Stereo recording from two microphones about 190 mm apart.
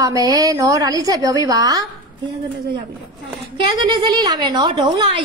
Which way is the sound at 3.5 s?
20° right (ahead or behind).